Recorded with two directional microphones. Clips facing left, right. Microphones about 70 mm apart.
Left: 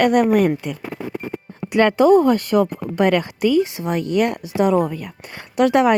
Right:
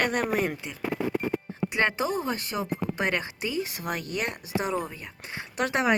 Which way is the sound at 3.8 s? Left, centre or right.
Left.